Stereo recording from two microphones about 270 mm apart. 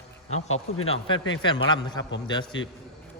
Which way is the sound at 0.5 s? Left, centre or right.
Left.